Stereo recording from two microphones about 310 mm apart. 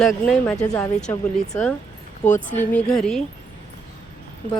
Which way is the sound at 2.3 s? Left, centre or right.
Left.